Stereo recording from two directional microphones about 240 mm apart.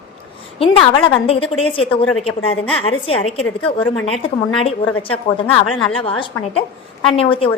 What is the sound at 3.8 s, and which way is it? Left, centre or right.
Speech, centre.